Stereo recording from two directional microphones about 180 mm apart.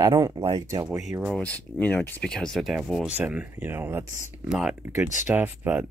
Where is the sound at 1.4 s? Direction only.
10° left (ahead or behind).